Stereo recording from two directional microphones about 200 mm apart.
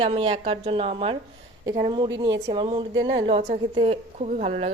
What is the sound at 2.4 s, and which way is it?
A woman's voice, 25° right (ahead or behind).